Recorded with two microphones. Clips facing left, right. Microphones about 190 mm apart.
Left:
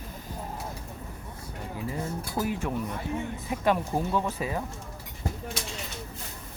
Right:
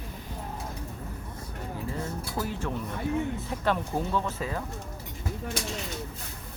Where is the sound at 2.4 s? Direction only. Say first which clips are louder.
Left 3 dB; 15° left (ahead or behind).